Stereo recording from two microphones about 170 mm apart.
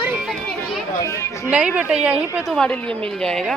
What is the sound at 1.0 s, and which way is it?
Speech, 15° left (ahead or behind).